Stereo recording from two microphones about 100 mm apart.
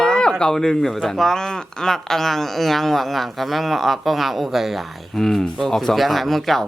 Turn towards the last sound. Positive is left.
turn(degrees=0)  # may be behind; listen again after turning